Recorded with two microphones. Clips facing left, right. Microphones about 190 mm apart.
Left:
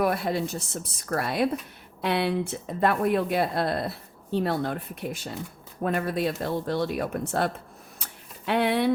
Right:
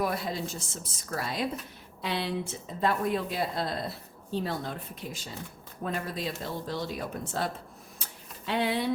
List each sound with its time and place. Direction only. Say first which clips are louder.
0.0 s speech: left 6 dB; 60° left (ahead or behind)